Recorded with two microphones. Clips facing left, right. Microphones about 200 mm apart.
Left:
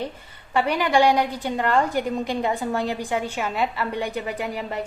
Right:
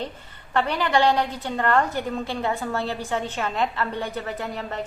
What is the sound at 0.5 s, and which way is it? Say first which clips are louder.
A woman's voice: left 2 dB; 10° left (ahead or behind).